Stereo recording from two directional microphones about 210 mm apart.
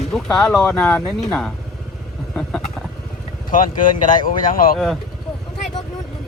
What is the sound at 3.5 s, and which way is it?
Speech, 40° left (ahead or behind).